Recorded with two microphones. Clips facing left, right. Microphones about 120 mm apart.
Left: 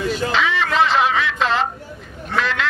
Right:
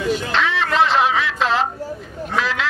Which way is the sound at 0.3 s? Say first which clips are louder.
Even; centre (ahead or behind).